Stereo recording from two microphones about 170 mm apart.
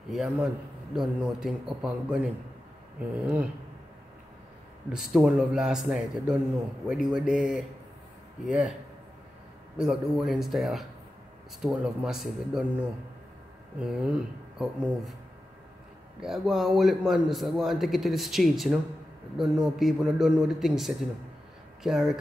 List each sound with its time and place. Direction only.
0.1 s a man's voice: centre (ahead or behind)
4.9 s a man's voice: 5° right (ahead or behind)
9.8 s a man's voice: 5° right (ahead or behind)
16.2 s a man's voice: centre (ahead or behind)